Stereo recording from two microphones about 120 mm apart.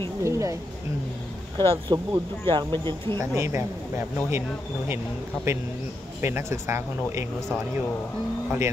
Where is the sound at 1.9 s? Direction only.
35° right (ahead or behind).